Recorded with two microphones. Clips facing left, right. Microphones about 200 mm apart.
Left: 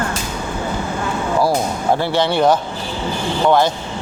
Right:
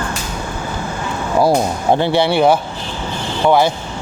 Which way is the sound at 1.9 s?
15° right (ahead or behind).